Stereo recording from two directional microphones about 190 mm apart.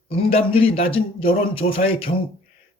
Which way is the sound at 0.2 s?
30° left (ahead or behind).